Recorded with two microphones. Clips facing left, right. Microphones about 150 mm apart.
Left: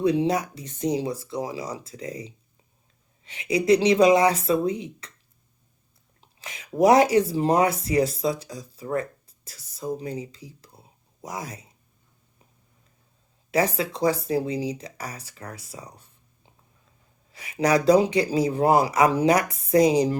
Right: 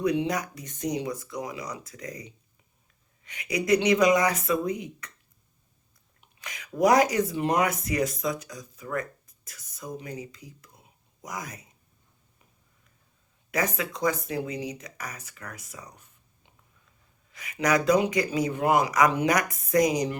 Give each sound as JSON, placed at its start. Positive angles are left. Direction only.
{"t": 0.0, "sound": "speech", "side_deg": 30}
{"t": 6.1, "sound": "speech", "side_deg": 25}
{"t": 13.5, "sound": "speech", "side_deg": 30}